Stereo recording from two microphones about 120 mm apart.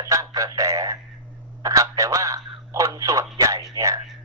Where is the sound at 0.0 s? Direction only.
30° right (ahead or behind).